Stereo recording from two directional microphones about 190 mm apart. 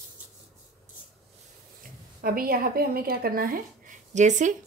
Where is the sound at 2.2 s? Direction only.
50° right (ahead or behind).